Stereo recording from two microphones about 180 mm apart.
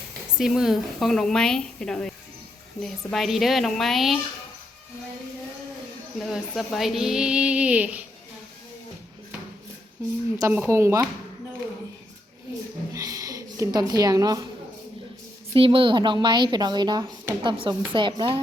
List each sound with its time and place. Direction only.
0.3 s speech: centre (ahead or behind)
6.1 s speech: centre (ahead or behind)
10.5 s speech: 10° right (ahead or behind)
12.9 s a sound: 20° right (ahead or behind)
15.5 s a woman's voice: 30° right (ahead or behind)